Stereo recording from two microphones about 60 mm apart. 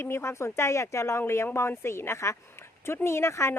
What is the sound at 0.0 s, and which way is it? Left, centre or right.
Speech, left.